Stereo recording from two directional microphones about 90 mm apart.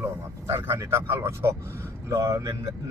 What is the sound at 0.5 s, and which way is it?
Speech, 30° right (ahead or behind).